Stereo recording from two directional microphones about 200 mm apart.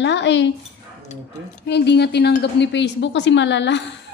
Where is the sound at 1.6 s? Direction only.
60° left (ahead or behind).